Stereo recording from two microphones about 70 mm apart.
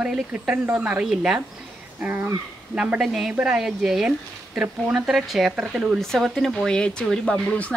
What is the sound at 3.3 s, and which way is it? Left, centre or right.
Speech, centre.